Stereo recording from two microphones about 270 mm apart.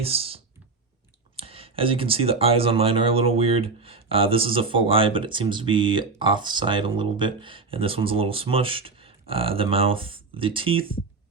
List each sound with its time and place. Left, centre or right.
0.0 s speech: right